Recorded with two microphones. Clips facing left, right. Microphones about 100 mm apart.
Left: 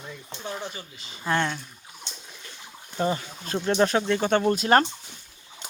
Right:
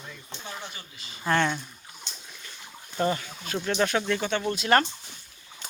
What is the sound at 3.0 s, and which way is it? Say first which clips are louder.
Speech: even; 20° left (ahead or behind).